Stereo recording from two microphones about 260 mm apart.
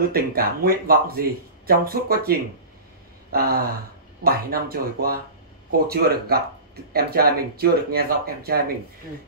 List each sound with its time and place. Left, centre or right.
0.1 s speech: right
3.3 s a sound: right
4.2 s speech: right